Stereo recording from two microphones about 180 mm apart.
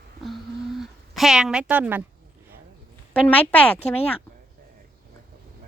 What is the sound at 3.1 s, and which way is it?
Speech, 10° left (ahead or behind).